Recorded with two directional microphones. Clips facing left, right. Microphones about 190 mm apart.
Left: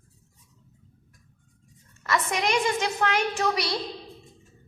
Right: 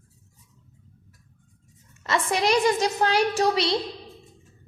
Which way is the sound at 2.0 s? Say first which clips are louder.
Right 3 dB; 30° right (ahead or behind).